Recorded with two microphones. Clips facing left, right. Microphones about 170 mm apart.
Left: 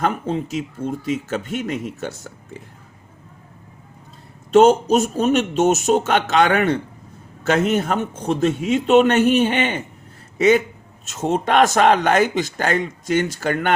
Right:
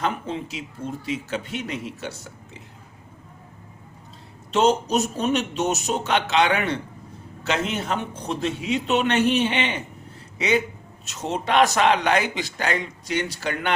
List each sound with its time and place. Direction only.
0.0 s a man's voice: 45° left (ahead or behind)
4.5 s a man's voice: 50° left (ahead or behind)